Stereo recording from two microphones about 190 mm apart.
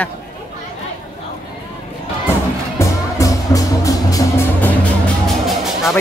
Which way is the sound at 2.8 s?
15° left (ahead or behind).